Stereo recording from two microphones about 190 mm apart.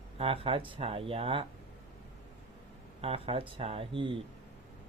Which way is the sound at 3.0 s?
30° right (ahead or behind).